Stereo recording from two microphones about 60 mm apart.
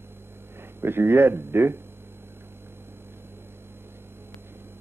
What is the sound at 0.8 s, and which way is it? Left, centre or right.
A man's voice, right.